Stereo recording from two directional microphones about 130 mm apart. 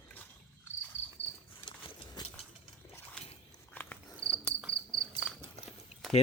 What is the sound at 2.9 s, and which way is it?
Biting, 10° left (ahead or behind).